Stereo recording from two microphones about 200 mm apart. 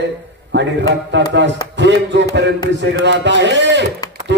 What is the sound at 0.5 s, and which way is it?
Speech, 60° right (ahead or behind).